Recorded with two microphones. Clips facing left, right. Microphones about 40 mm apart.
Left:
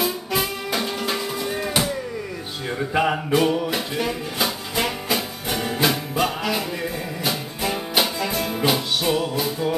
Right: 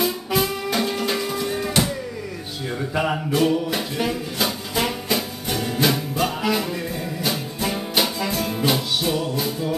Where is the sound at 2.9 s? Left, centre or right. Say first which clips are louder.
Left 3 dB; centre.